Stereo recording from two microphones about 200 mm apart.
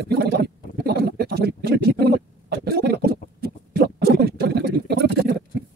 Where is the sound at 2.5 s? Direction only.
55° right (ahead or behind).